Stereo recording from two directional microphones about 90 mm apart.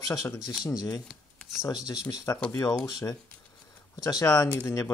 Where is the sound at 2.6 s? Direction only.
50° left (ahead or behind).